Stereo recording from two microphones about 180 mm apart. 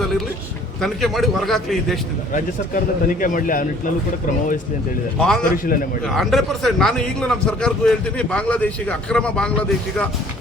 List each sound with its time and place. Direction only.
0.8 s a man's voice: centre (ahead or behind)
2.3 s a man's voice: 50° left (ahead or behind)
5.4 s a man's voice: 50° left (ahead or behind)
6.1 s a man's voice: centre (ahead or behind)